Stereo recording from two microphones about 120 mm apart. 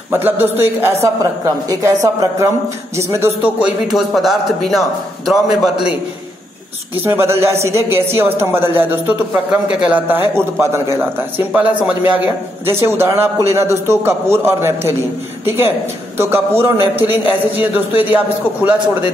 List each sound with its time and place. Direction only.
0.1 s speech: 15° right (ahead or behind)
3.4 s a man's voice: 10° right (ahead or behind)
7.0 s a man's voice: 20° right (ahead or behind)